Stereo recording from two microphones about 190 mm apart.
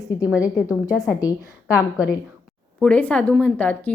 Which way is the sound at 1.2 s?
20° left (ahead or behind).